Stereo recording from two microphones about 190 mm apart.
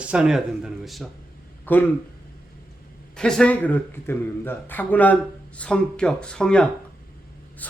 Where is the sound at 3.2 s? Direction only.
5° left (ahead or behind).